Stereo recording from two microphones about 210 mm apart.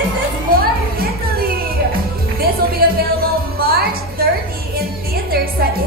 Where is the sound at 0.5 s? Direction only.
45° right (ahead or behind).